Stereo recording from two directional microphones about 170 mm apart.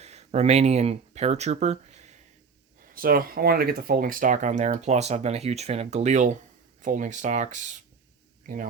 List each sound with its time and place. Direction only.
0.0 s speech: 40° right (ahead or behind)
2.9 s speech: 60° right (ahead or behind)